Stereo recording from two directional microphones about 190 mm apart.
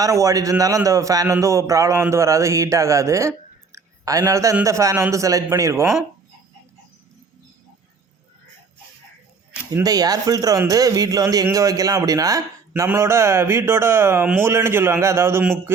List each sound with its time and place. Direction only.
0.0 s a man's voice: 15° right (ahead or behind)
9.7 s a man's voice: 20° right (ahead or behind)